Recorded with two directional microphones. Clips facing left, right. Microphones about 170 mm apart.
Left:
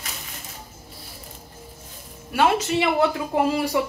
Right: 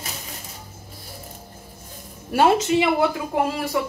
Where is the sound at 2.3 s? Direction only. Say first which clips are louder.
Right 3 dB; 35° right (ahead or behind).